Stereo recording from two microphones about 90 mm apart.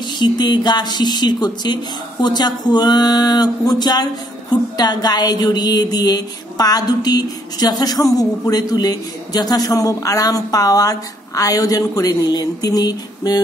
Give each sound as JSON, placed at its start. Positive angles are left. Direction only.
{"t": 0.2, "sound": "a man's voice", "side_deg": 55}